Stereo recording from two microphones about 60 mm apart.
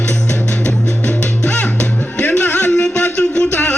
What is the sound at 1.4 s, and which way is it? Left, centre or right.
Music, left.